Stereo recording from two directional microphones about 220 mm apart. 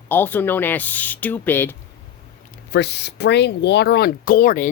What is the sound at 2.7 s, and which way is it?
Speech, 50° left (ahead or behind).